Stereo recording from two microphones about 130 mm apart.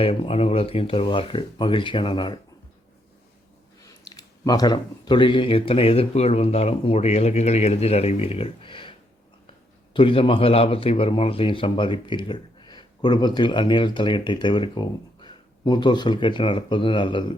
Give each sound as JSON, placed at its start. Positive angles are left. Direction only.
{"t": 0.0, "sound": "speech", "side_deg": 50}
{"t": 3.8, "sound": "speech", "side_deg": 30}